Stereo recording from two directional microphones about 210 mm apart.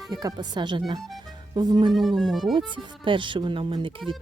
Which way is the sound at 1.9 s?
Centre (ahead or behind).